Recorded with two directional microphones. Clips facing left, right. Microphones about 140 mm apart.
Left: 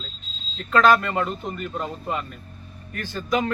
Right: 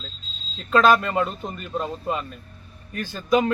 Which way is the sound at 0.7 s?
20° right (ahead or behind).